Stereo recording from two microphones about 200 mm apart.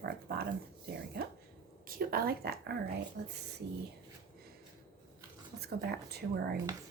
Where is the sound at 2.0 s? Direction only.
45° right (ahead or behind).